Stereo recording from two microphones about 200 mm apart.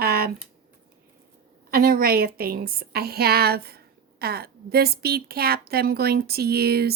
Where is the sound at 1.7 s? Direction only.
50° right (ahead or behind).